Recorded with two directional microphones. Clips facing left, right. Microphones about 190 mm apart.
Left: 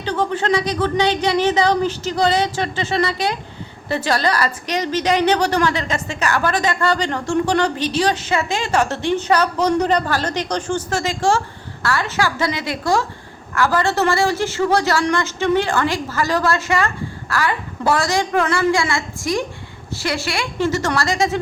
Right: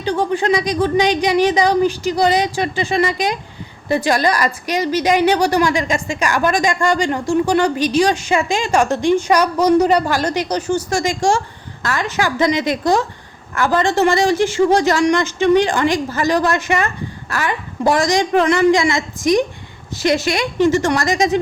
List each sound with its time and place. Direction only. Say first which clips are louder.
0.0 s a woman's voice: right 3 dB; 15° right (ahead or behind)